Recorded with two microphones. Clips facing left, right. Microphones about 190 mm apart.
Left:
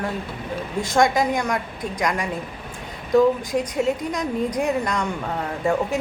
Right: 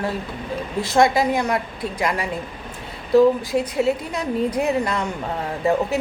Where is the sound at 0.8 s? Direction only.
5° right (ahead or behind).